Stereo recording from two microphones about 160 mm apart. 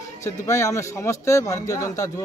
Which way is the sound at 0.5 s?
20° left (ahead or behind).